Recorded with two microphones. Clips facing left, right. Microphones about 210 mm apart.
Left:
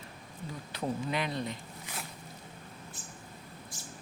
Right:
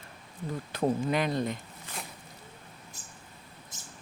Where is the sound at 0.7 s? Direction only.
50° right (ahead or behind).